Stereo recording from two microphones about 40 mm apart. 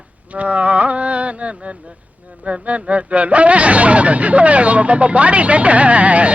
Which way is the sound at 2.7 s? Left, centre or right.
Right.